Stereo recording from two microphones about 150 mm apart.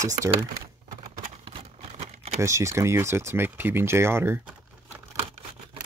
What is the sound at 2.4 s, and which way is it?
Speech, 20° right (ahead or behind).